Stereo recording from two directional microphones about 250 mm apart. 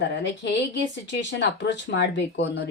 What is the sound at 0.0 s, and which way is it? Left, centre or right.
Speech, left.